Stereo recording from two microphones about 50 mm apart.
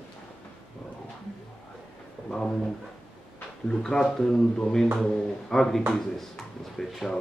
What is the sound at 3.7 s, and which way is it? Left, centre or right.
Speech, centre.